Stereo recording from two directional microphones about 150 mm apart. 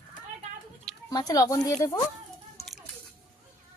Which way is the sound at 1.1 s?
25° left (ahead or behind).